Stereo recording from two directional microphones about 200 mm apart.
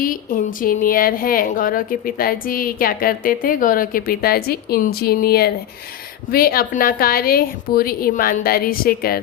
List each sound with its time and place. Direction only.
0.0 s a woman's voice: 45° left (ahead or behind)